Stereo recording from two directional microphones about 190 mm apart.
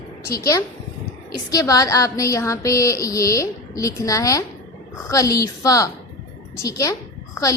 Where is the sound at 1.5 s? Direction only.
20° left (ahead or behind).